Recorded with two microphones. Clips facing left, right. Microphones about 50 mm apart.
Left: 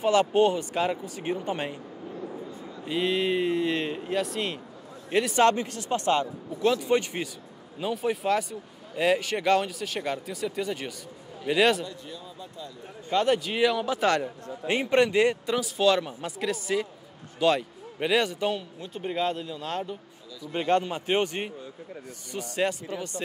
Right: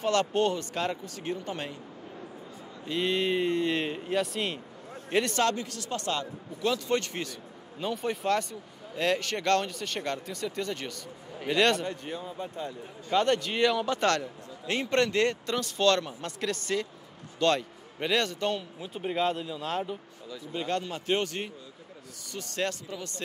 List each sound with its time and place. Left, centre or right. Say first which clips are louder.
0.0 s speech: left 4 dB; centre
3.0 s speech: left 2 dB; centre
5.3 s speech: left 6 dB; left
7.8 s speech: left 3 dB; centre
11.8 s speech: right 3 dB; right
13.1 s speech: left 1 dB; centre
18.8 s speech: even; centre
20.5 s speech: left 7 dB; left